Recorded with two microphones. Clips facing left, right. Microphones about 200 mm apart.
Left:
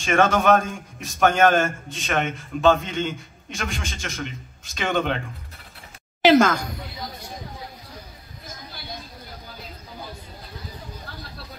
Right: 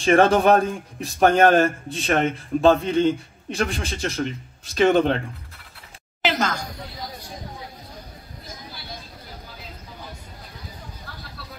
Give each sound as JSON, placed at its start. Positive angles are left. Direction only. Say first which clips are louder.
{"t": 0.0, "sound": "speech", "louder": "right 3 dB", "side_deg": -35}
{"t": 6.2, "sound": "speech", "louder": "left 8 dB", "side_deg": 50}